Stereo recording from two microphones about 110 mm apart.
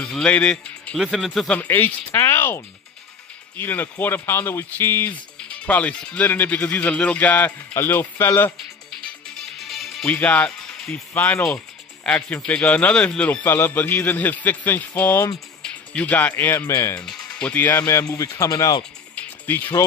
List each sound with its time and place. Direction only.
0.0 s speech: 10° left (ahead or behind)
0.9 s speech: centre (ahead or behind)
1.6 s speech: 15° left (ahead or behind)
10.0 s speech: 15° left (ahead or behind)
11.4 s music: 10° left (ahead or behind)
12.4 s speech: 10° left (ahead or behind); by 17.0 s 30° left (ahead or behind)
17.0 s speech: 5° left (ahead or behind); by 18.8 s 35° left (ahead or behind)
19.1 s music: 15° left (ahead or behind)